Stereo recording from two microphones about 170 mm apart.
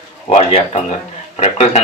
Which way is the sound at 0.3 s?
40° left (ahead or behind).